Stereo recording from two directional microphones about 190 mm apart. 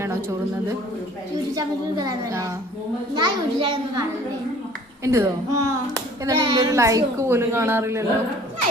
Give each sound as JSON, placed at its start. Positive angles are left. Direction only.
{"t": 1.5, "sound": "a woman's voice", "side_deg": -20}
{"t": 5.0, "sound": "a woman's voice", "side_deg": -15}